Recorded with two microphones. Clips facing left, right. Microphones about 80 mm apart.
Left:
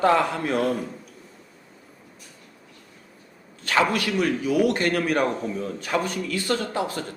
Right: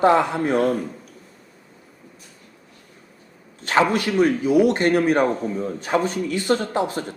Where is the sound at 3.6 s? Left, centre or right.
Right.